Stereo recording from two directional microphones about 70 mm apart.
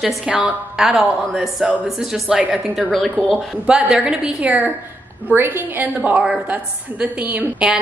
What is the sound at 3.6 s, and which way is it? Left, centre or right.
Speech, centre.